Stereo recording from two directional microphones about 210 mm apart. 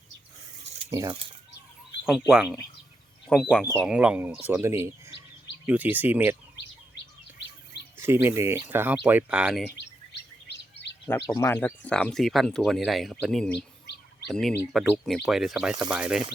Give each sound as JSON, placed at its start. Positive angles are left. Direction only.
{"t": 0.9, "sound": "speech", "side_deg": -15}
{"t": 2.0, "sound": "speech", "side_deg": 0}
{"t": 6.9, "sound": "bird vocalization", "side_deg": 55}
{"t": 7.9, "sound": "speech", "side_deg": -10}
{"t": 9.7, "sound": "chirp", "side_deg": 55}
{"t": 11.3, "sound": "speech", "side_deg": 15}
{"t": 14.7, "sound": "speech", "side_deg": 0}